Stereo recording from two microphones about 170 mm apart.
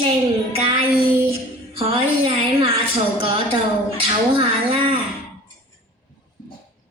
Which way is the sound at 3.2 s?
35° right (ahead or behind).